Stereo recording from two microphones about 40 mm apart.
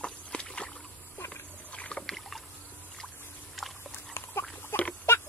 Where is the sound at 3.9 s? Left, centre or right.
Left.